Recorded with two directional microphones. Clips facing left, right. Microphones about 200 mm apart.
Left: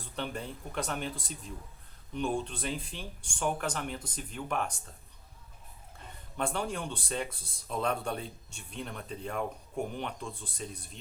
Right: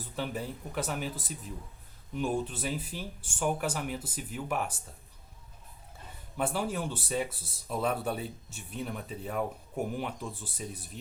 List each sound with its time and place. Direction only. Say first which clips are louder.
0.0 s speech: right 2 dB; 5° right (ahead or behind)
6.3 s speech: right 2 dB; 5° right (ahead or behind)